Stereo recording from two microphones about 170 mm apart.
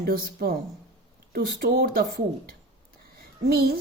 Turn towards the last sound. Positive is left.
turn(degrees=-65)  # may be behind; listen again after turning